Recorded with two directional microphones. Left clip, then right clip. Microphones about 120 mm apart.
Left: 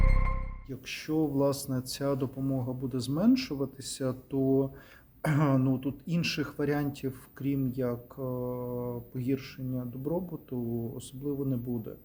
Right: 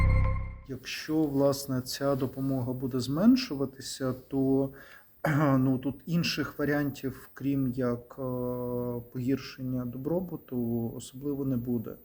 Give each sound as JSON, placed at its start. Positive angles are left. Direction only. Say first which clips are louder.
{"t": 0.7, "sound": "speech", "louder": "right 1 dB", "side_deg": 25}